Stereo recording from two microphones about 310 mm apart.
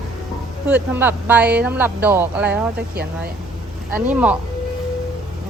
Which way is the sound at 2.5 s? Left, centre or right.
Right.